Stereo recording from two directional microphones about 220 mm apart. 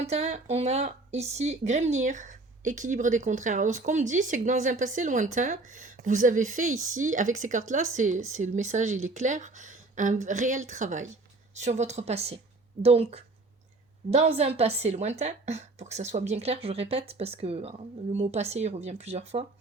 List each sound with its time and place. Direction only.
0.0 s speech: 30° right (ahead or behind)